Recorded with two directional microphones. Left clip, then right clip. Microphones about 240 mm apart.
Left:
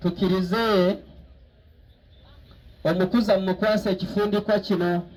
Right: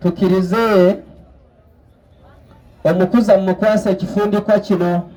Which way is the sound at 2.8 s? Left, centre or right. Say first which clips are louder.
Right 9 dB; right.